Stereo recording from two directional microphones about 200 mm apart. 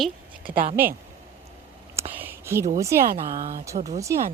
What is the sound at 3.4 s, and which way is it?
Speech, 40° right (ahead or behind).